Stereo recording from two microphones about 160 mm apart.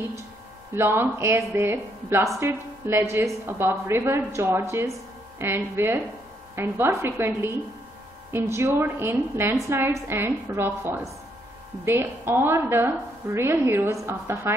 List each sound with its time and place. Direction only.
0.7 s speech: 15° right (ahead or behind)